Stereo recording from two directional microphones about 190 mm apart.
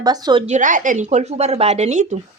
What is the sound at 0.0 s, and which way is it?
Speech, 20° right (ahead or behind).